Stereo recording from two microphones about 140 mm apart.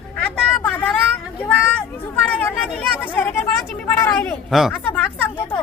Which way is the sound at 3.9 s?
15° left (ahead or behind).